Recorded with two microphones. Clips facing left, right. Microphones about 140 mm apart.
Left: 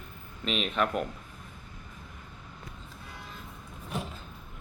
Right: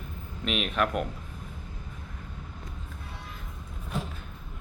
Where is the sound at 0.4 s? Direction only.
5° right (ahead or behind).